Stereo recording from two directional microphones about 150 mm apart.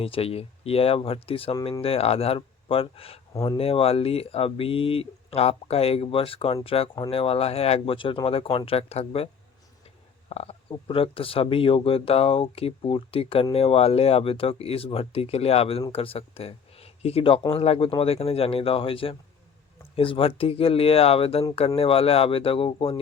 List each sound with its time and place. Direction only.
0.0 s speech: 40° left (ahead or behind)